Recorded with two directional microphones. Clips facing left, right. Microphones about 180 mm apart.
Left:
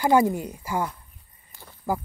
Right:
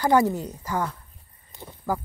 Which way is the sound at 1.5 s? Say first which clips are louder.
Right 7 dB; 20° right (ahead or behind).